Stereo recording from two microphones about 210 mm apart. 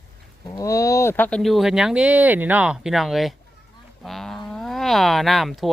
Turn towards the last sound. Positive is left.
turn(degrees=0)  # may be behind; listen again after turning